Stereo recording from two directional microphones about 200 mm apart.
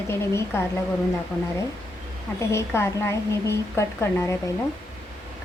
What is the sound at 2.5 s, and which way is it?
A woman's voice, 10° left (ahead or behind).